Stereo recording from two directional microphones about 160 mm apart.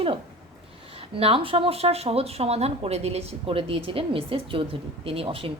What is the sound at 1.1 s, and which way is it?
Speech, 35° right (ahead or behind).